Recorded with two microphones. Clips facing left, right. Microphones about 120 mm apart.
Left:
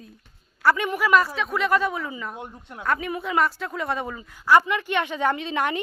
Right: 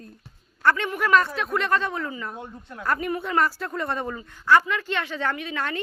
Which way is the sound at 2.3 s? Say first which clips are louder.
Even; 20° left (ahead or behind).